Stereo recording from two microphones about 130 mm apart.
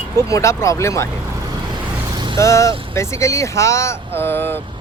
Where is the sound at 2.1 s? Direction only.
35° right (ahead or behind).